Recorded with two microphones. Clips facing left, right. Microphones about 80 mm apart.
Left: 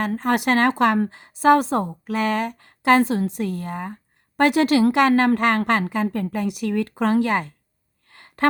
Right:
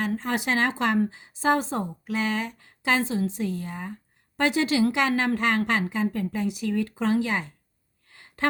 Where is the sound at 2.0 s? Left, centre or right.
Left.